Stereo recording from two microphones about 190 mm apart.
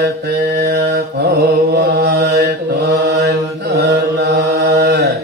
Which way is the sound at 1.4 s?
55° right (ahead or behind).